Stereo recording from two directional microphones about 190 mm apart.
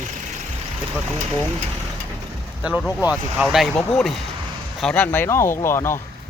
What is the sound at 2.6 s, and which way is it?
A man's voice, 5° right (ahead or behind).